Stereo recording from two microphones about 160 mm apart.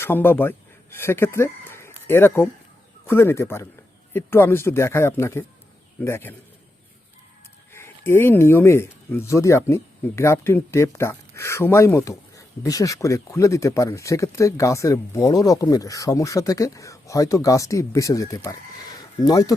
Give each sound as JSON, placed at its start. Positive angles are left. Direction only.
{"t": 0.0, "sound": "speech", "side_deg": 15}
{"t": 7.7, "sound": "speech", "side_deg": 15}